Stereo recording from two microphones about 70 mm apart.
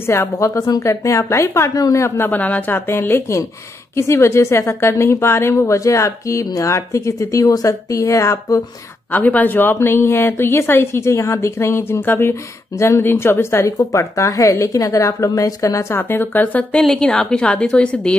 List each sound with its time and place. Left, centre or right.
0.0 s a woman's voice: left
0.6 s a woman's voice: left
2.9 s a woman's voice: left
9.1 s a woman's voice: left
16.0 s speech: left
16.9 s a woman's voice: centre